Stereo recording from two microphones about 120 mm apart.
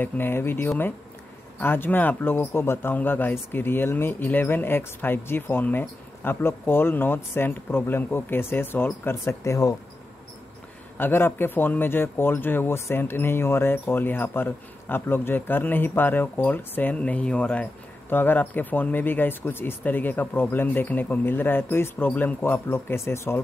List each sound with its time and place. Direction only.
0.0 s speech: 20° left (ahead or behind)
11.0 s speech: 20° left (ahead or behind)